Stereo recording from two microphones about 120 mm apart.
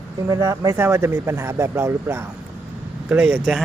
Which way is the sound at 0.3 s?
30° right (ahead or behind).